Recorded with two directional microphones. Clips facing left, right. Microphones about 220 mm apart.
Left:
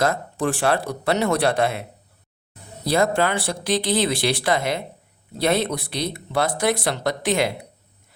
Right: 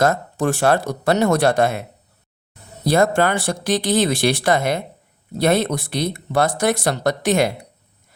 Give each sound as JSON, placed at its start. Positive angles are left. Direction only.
{"t": 0.0, "sound": "speech", "side_deg": -45}
{"t": 2.8, "sound": "speech", "side_deg": -45}